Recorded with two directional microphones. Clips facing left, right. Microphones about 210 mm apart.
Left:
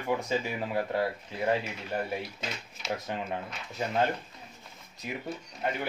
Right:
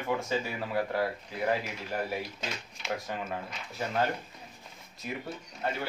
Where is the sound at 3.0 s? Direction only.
20° left (ahead or behind).